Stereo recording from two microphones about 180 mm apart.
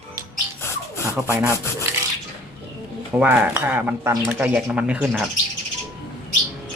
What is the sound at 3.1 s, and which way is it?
Speech, 10° right (ahead or behind).